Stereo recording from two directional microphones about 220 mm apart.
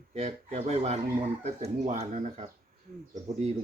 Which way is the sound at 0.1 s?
30° right (ahead or behind).